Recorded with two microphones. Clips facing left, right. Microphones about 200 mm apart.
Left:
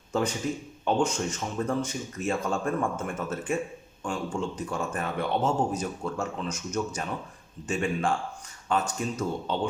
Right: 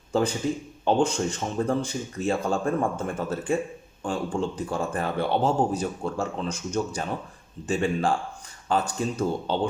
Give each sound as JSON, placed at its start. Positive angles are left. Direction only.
{"t": 0.1, "sound": "a man's voice", "side_deg": -30}